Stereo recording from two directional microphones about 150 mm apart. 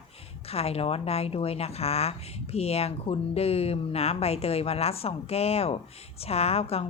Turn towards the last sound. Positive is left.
turn(degrees=40)  # may be behind; listen again after turning